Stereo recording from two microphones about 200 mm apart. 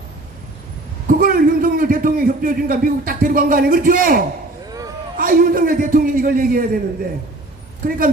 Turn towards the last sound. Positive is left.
turn(degrees=-45)  # may be behind; listen again after turning